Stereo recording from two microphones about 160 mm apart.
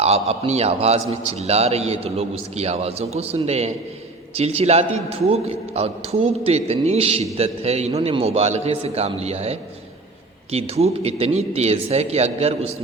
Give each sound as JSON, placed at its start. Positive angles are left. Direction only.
{"t": 0.0, "sound": "a man's voice", "side_deg": -40}